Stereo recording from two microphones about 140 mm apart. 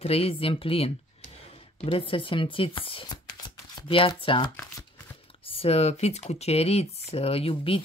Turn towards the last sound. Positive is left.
turn(degrees=40)  # may be behind; listen again after turning